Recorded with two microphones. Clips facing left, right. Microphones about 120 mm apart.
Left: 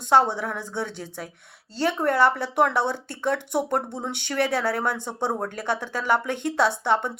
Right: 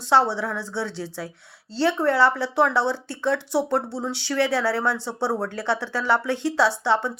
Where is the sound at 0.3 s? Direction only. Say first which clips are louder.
Right 2 dB; 50° left (ahead or behind).